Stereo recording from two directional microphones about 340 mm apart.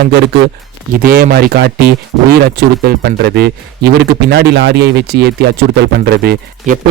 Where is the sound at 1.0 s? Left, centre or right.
Right.